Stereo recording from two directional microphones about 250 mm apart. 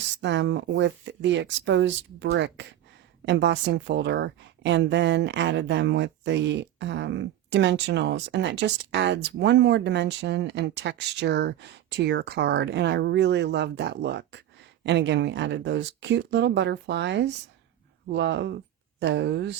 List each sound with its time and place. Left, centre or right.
0.2 s a woman's voice: right